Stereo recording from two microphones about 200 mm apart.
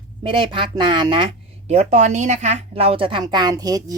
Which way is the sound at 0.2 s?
25° right (ahead or behind).